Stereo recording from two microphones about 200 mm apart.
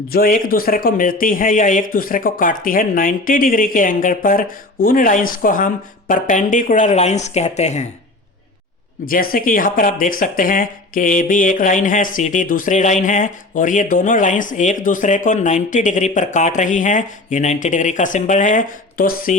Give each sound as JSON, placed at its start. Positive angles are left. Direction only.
{"t": 0.1, "sound": "a man's voice", "side_deg": 45}
{"t": 9.0, "sound": "speech", "side_deg": 45}